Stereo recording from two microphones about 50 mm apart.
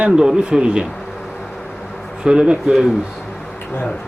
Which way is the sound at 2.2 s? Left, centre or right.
Centre.